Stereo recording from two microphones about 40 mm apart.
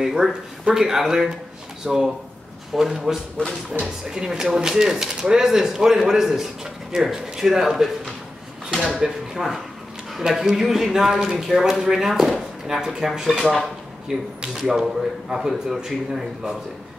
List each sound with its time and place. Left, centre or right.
0.0 s speech: centre
8.9 s speech: right
10.1 s speech: centre